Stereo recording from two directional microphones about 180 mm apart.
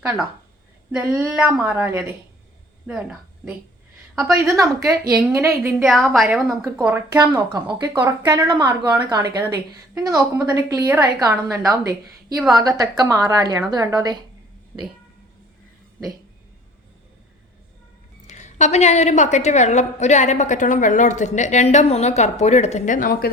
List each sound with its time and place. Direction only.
0.9 s a woman's voice: 5° right (ahead or behind)
5.8 s a woman's voice: centre (ahead or behind)
6.8 s a woman's voice: 15° right (ahead or behind)
18.3 s a woman's voice: 40° left (ahead or behind)